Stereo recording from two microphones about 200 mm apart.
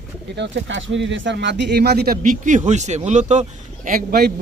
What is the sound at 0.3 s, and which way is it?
Speech, 65° right (ahead or behind).